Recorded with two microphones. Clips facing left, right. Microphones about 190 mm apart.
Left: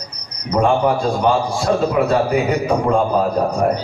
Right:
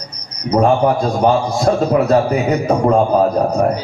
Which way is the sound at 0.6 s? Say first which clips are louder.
Right 2 dB; 35° right (ahead or behind).